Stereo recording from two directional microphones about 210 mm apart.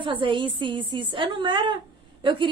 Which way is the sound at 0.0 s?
25° right (ahead or behind).